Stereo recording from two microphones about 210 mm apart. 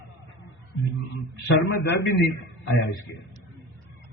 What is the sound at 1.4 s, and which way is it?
Speech, 55° left (ahead or behind).